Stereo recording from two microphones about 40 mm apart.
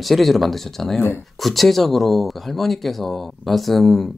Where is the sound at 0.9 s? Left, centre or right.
Left.